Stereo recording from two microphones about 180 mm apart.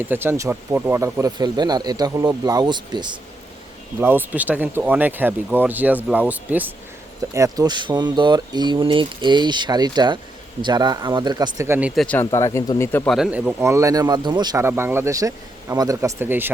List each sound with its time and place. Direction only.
0.0 s speech: 10° right (ahead or behind)
4.0 s speech: 10° right (ahead or behind)
12.0 s speech: 10° left (ahead or behind)
13.1 s speech: centre (ahead or behind)
13.6 s speech: 15° right (ahead or behind)